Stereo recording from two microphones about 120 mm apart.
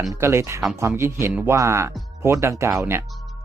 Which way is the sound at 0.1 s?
20° right (ahead or behind).